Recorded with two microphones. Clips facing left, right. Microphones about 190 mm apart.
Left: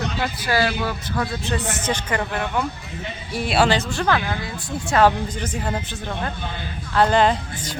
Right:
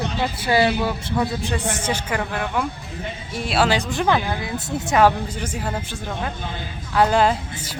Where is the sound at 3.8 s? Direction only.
15° right (ahead or behind).